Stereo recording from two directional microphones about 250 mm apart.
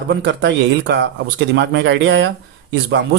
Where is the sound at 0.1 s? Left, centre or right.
Right.